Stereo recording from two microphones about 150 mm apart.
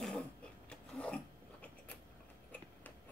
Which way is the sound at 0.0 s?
5° left (ahead or behind).